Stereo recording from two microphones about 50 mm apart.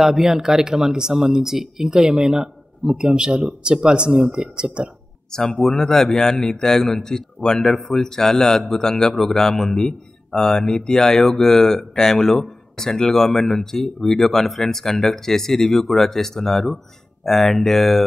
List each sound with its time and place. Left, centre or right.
0.0 s speech: centre
5.3 s a man's voice: centre